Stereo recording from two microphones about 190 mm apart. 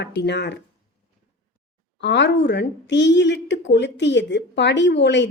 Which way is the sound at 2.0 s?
65° left (ahead or behind).